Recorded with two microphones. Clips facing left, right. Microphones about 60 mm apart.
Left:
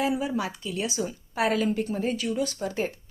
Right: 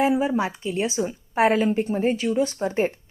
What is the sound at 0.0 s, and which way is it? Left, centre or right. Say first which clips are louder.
A woman's voice: right 6 dB; right.